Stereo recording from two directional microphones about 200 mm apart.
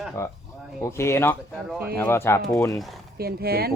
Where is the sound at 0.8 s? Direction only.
15° left (ahead or behind).